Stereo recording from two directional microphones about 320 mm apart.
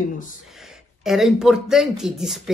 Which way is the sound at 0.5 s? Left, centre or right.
Centre.